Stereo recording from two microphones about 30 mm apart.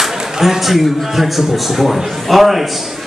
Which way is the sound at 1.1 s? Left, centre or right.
Centre.